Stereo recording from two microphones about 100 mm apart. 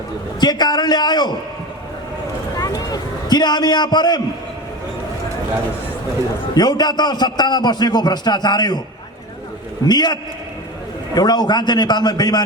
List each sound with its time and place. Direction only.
0.3 s a man's voice: 45° left (ahead or behind)
2.6 s a sound: 40° left (ahead or behind)
6.5 s a man's voice: 45° left (ahead or behind)
9.8 s a man's voice: 45° left (ahead or behind)